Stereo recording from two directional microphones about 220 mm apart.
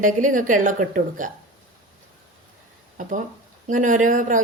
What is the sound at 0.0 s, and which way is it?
A woman's voice, 35° right (ahead or behind).